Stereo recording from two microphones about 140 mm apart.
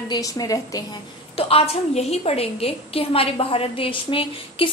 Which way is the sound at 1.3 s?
45° left (ahead or behind).